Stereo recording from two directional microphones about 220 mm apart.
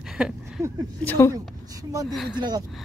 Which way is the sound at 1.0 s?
10° left (ahead or behind).